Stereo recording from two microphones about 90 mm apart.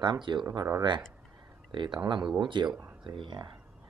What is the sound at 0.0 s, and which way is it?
Speech, 55° right (ahead or behind).